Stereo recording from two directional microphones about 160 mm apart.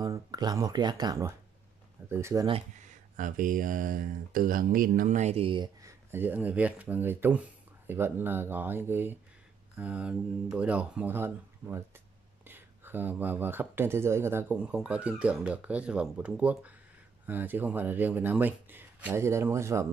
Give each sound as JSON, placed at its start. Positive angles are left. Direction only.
{"t": 0.0, "sound": "speech", "side_deg": -25}
{"t": 2.9, "sound": "speech", "side_deg": -55}
{"t": 5.8, "sound": "speech", "side_deg": -15}